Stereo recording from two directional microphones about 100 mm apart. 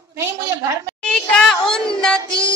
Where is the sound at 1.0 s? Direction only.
5° left (ahead or behind).